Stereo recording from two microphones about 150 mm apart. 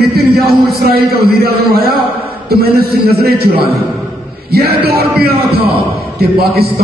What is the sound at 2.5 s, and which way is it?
A man's voice, 90° right.